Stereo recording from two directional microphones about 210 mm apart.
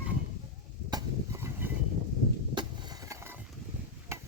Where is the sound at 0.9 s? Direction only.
15° right (ahead or behind).